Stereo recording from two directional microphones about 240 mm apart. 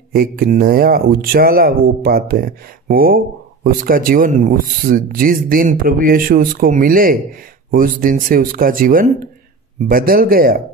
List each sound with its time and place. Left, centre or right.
0.1 s speech: right